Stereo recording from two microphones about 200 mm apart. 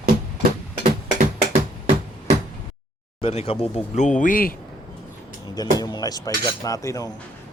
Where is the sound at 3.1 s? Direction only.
30° left (ahead or behind).